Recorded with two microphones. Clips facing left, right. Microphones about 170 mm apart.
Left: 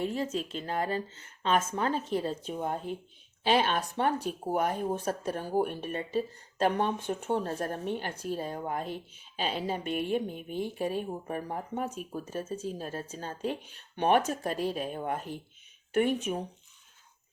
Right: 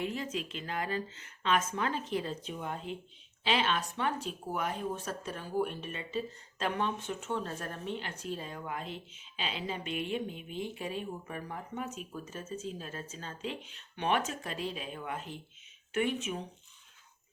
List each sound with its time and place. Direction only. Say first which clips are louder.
0.0 s speech: left 4 dB; 35° left (ahead or behind); by 7.3 s 50° left (ahead or behind)
7.3 s speech: left 6 dB; 40° left (ahead or behind)